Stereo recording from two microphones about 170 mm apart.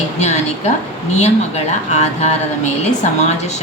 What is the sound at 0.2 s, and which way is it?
Speech, 40° left (ahead or behind).